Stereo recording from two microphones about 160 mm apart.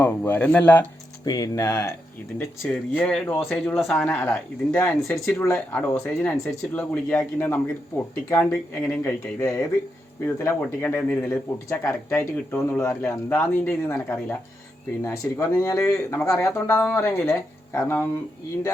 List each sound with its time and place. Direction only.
0.0 s speech: 10° left (ahead or behind)
1.2 s speech: 25° left (ahead or behind)
2.4 s speech: 10° left (ahead or behind)